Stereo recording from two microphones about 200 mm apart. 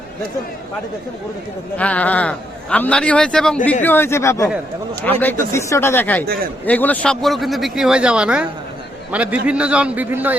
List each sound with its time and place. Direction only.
1.8 s a man's voice: 5° left (ahead or behind)
6.2 s a man's voice: 50° right (ahead or behind)
6.7 s a man's voice: 10° left (ahead or behind); by 10.3 s 10° right (ahead or behind)